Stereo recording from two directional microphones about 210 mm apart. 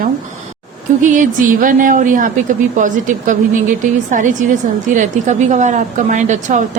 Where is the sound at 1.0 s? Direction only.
40° right (ahead or behind).